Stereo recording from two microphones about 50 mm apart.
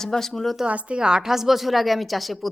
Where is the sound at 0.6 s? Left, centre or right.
Right.